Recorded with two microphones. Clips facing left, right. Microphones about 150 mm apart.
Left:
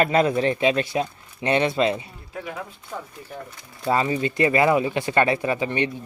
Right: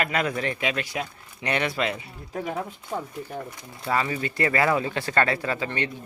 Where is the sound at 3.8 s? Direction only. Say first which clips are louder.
Left 4 dB; 25° left (ahead or behind).